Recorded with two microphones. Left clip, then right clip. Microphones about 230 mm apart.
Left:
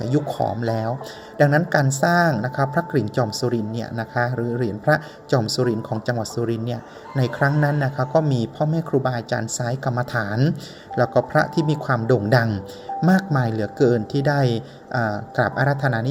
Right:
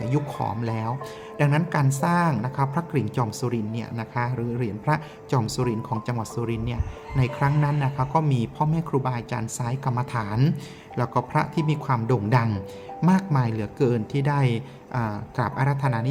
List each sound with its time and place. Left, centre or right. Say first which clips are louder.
0.0 s speech: left 5 dB; centre